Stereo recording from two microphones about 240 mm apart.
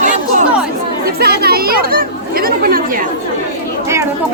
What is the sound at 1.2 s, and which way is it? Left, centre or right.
Children playing, right.